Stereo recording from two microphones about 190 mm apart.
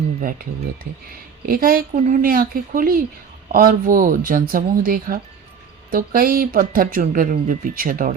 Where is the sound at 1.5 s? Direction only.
50° right (ahead or behind).